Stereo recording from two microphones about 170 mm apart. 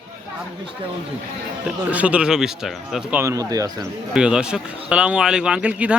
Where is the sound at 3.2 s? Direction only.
20° right (ahead or behind).